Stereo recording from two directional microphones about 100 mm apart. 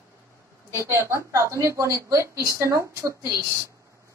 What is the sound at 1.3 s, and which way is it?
A woman's voice, 30° right (ahead or behind).